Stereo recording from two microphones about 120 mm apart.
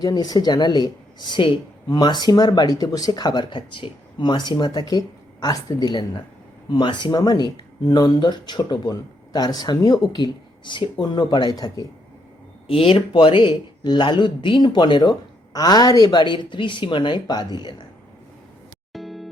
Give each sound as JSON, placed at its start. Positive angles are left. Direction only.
{"t": 0.0, "sound": "speech", "side_deg": 35}
{"t": 12.6, "sound": "speech", "side_deg": 50}
{"t": 18.9, "sound": "music", "side_deg": 0}